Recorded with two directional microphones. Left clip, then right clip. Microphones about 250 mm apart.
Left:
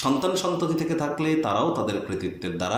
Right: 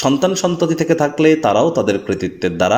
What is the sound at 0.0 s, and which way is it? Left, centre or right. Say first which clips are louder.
Speech: right 8 dB; right.